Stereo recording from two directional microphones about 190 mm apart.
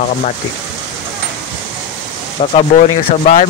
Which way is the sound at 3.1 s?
35° left (ahead or behind).